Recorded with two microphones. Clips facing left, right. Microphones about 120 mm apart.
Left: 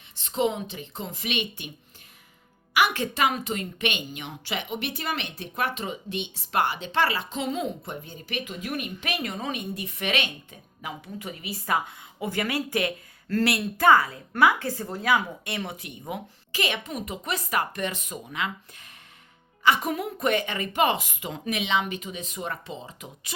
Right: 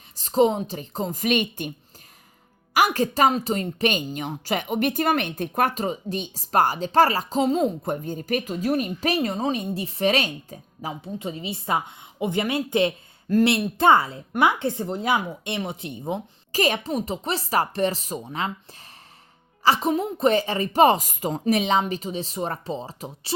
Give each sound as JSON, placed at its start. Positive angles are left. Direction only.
{"t": 0.2, "sound": "a woman's voice", "side_deg": -40}
{"t": 2.7, "sound": "a woman's voice", "side_deg": -40}
{"t": 16.5, "sound": "a woman's voice", "side_deg": -40}